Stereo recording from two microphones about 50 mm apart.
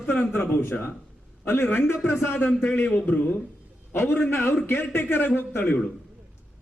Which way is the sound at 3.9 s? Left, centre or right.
Left.